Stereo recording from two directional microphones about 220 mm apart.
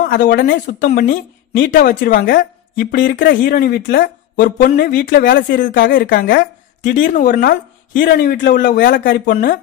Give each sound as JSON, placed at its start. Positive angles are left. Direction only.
{"t": 0.1, "sound": "speech", "side_deg": 45}